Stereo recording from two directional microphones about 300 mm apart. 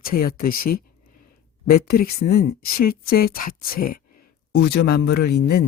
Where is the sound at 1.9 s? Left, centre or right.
Left.